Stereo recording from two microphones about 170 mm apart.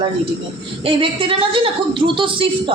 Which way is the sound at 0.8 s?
35° right (ahead or behind).